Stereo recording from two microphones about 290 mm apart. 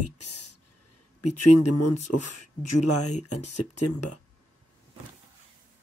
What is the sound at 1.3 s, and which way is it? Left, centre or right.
Speech, left.